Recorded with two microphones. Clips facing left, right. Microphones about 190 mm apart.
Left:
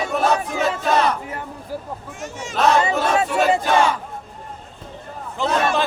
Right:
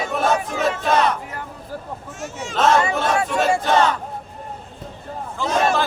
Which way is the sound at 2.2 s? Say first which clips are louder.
Even; 5° right (ahead or behind).